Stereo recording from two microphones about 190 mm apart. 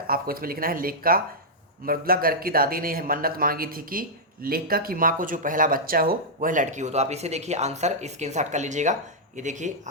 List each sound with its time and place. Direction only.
0.1 s speech: 50° right (ahead or behind)